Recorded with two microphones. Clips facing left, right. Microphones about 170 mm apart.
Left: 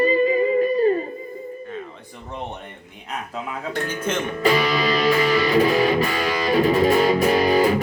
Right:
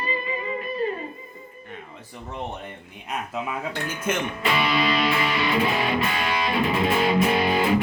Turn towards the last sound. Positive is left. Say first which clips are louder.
# left 4 dB
turn(degrees=40)  # may be behind; listen again after turning